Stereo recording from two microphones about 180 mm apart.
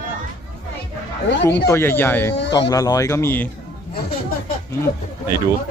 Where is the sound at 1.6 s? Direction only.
15° left (ahead or behind).